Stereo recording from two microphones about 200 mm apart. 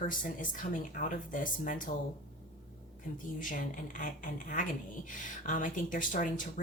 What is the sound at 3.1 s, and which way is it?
A woman's voice, 40° left (ahead or behind).